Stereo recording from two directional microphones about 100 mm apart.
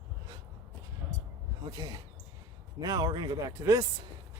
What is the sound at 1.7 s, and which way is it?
Speech, 40° right (ahead or behind).